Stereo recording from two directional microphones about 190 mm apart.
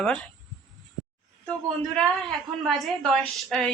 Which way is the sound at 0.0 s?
5° left (ahead or behind).